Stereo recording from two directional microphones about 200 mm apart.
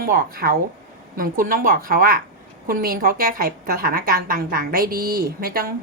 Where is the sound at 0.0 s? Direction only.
50° right (ahead or behind).